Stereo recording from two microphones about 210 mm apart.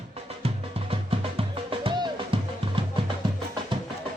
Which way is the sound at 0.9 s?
25° right (ahead or behind).